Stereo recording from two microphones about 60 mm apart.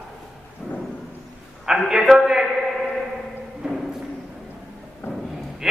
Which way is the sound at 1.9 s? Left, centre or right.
Centre.